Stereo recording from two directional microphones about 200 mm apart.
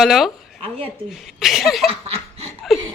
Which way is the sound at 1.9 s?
30° right (ahead or behind).